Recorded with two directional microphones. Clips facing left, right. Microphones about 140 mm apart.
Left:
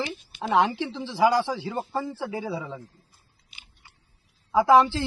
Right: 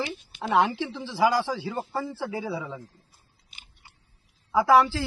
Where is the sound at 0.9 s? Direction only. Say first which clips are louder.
Left 2 dB; 20° left (ahead or behind).